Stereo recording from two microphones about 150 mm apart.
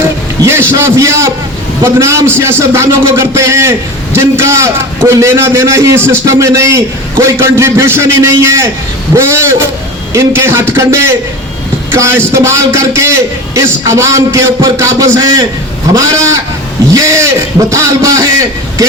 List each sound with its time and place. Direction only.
0.4 s a man's voice: 20° right (ahead or behind)